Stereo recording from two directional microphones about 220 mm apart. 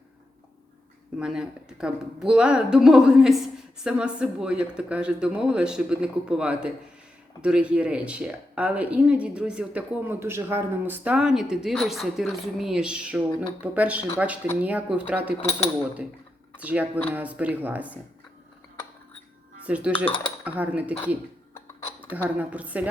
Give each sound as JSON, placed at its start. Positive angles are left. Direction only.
{"t": 1.2, "sound": "speech", "side_deg": -5}
{"t": 15.4, "sound": "speech", "side_deg": 30}
{"t": 16.6, "sound": "speech", "side_deg": -5}
{"t": 19.6, "sound": "speech", "side_deg": -5}
{"t": 22.1, "sound": "speech", "side_deg": -5}